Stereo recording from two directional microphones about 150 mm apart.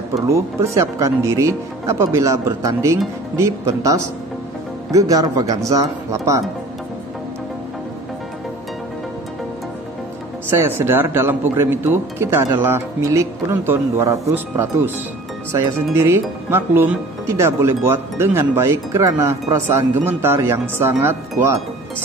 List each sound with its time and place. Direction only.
0.1 s speech: 20° right (ahead or behind)
4.9 s speech: 25° right (ahead or behind)
10.5 s speech: 15° right (ahead or behind)